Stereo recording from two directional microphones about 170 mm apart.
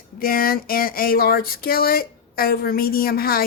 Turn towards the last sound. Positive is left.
turn(degrees=60)  # may be behind; listen again after turning